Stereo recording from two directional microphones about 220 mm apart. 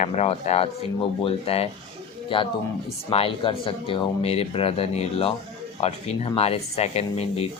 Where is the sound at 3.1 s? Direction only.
25° left (ahead or behind).